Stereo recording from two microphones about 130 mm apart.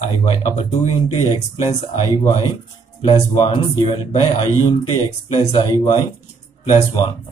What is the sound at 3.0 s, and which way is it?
Speech, 45° left (ahead or behind).